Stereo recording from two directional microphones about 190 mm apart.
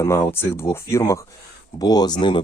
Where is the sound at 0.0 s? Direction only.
15° left (ahead or behind).